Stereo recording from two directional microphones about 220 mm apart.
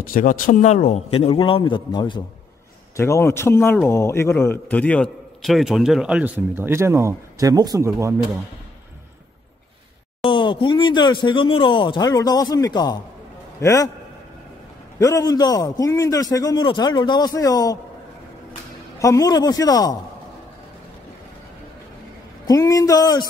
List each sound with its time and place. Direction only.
0.0 s a man's voice: 40° left (ahead or behind); by 8.3 s 15° right (ahead or behind)
10.2 s a man's voice: 20° left (ahead or behind)
15.0 s a man's voice: 15° left (ahead or behind)
18.9 s a man's voice: 15° left (ahead or behind)
22.5 s a man's voice: 15° left (ahead or behind)